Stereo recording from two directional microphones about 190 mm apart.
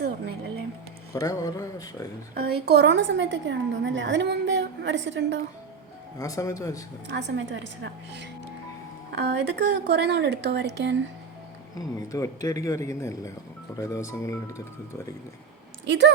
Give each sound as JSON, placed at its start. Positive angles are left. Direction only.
{"t": 1.1, "sound": "a man's voice", "side_deg": 20}
{"t": 2.3, "sound": "a woman's voice", "side_deg": -55}
{"t": 6.1, "sound": "a man's voice", "side_deg": 20}
{"t": 7.1, "sound": "a woman's voice", "side_deg": -70}
{"t": 11.8, "sound": "a man's voice", "side_deg": 20}
{"t": 15.9, "sound": "a woman's voice", "side_deg": -65}